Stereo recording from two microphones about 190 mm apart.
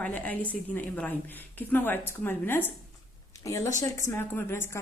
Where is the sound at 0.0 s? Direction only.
10° left (ahead or behind).